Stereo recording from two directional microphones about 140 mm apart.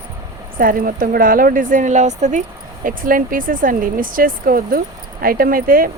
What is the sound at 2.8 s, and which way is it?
Speech, 80° right.